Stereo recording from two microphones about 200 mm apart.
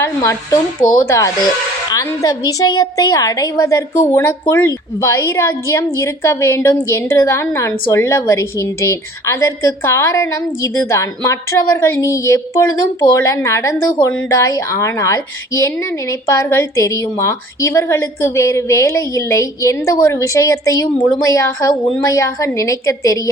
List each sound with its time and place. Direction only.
0.0 s a woman's voice: 15° left (ahead or behind)